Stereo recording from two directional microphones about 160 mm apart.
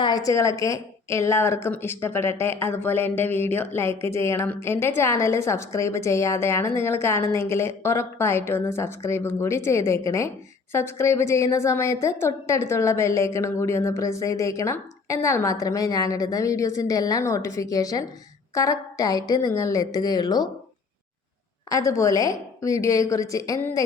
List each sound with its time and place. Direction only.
0.0 s a woman's voice: 25° left (ahead or behind)
21.7 s a woman's voice: 20° left (ahead or behind)